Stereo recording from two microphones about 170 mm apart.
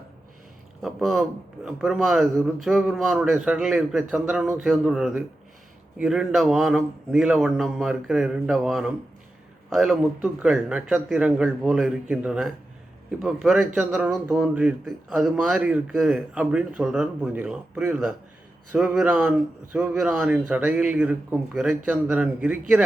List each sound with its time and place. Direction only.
0.8 s a man's voice: centre (ahead or behind)